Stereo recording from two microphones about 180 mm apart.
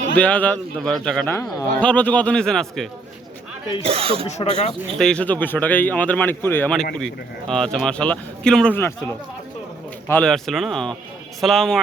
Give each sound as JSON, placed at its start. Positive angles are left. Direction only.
{"t": 0.2, "sound": "speech", "side_deg": 10}
{"t": 3.8, "sound": "speech", "side_deg": -30}
{"t": 4.3, "sound": "speech", "side_deg": 40}
{"t": 4.9, "sound": "speech", "side_deg": 5}
{"t": 10.1, "sound": "speech", "side_deg": 5}